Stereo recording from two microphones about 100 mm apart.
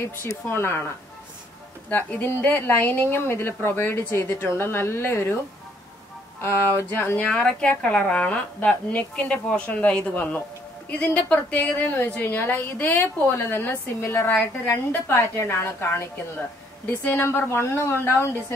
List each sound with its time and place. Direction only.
0.0 s a woman's voice: 25° left (ahead or behind)
6.4 s a woman's voice: 20° left (ahead or behind)